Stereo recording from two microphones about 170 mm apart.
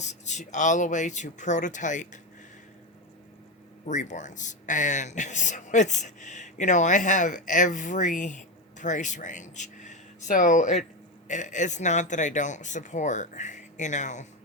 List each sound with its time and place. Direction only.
0.0 s speech: 45° left (ahead or behind)
3.8 s speech: 45° left (ahead or behind)